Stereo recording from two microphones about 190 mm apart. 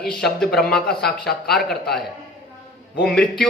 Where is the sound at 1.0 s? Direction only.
55° left (ahead or behind).